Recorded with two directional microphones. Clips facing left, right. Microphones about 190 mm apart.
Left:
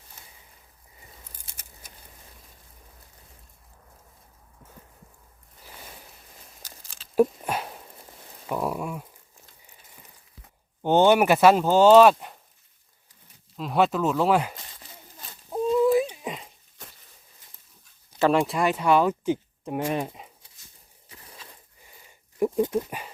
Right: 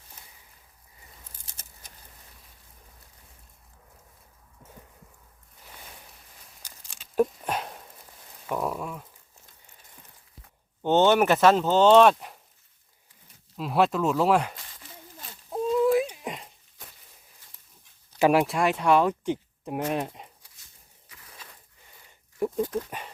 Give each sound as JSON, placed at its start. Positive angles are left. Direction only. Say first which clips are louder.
{"t": 7.2, "sound": "a sound", "louder": "left 3 dB", "side_deg": 5}
{"t": 8.5, "sound": "speech", "louder": "left 2 dB", "side_deg": 10}
{"t": 10.8, "sound": "speech", "louder": "left 2 dB", "side_deg": 10}
{"t": 13.6, "sound": "speech", "louder": "left 1 dB", "side_deg": 0}
{"t": 15.5, "sound": "a sound", "louder": "left 2 dB", "side_deg": 0}
{"t": 18.2, "sound": "speech", "louder": "even", "side_deg": -10}
{"t": 18.4, "sound": "speech", "louder": "even", "side_deg": 0}
{"t": 21.1, "sound": "a sound", "louder": "left 4 dB", "side_deg": 30}
{"t": 22.4, "sound": "dog", "louder": "left 4 dB", "side_deg": 10}
{"t": 22.7, "sound": "speech", "louder": "left 4 dB", "side_deg": 10}